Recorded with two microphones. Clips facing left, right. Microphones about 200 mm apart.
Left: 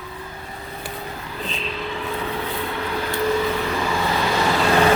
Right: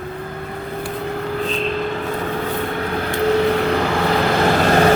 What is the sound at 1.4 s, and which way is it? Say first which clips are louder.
Vehicle: right 4 dB; 45° right (ahead or behind).